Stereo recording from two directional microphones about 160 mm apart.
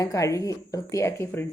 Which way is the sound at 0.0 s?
20° left (ahead or behind).